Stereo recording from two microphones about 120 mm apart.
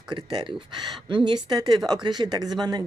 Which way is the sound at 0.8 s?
40° right (ahead or behind).